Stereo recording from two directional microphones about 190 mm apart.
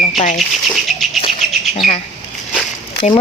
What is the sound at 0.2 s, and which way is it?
Speech, 40° left (ahead or behind).